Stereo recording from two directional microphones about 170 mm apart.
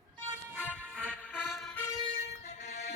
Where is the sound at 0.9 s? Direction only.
Centre (ahead or behind).